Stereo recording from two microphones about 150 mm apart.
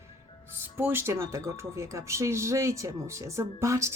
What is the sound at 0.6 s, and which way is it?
Speech, 15° right (ahead or behind).